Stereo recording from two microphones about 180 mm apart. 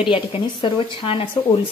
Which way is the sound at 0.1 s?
30° left (ahead or behind).